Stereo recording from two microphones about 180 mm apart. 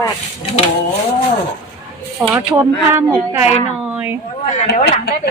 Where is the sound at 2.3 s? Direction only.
15° right (ahead or behind).